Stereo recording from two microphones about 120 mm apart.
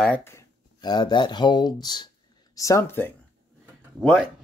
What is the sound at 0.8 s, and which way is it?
Speech, 35° left (ahead or behind).